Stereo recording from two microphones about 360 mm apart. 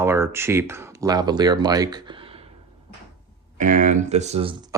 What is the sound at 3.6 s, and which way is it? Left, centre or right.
Speech, right.